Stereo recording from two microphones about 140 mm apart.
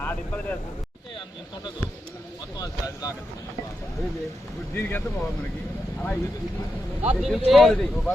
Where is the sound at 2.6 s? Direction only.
25° left (ahead or behind).